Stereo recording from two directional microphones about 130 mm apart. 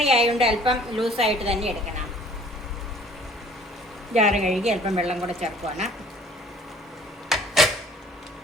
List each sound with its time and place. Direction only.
0.0 s a woman's voice: 50° right (ahead or behind)
0.7 s a woman's voice: centre (ahead or behind)
1.1 s a woman's voice: 50° right (ahead or behind)
4.3 s a woman's voice: centre (ahead or behind)
4.9 s speech: 55° right (ahead or behind)
7.3 s a sound: centre (ahead or behind)